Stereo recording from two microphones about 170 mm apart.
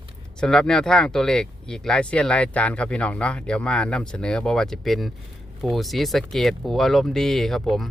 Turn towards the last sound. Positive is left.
turn(degrees=0)  # may be behind; listen again after turning